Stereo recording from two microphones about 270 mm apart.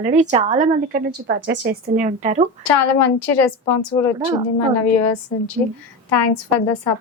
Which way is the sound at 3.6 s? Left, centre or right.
Centre.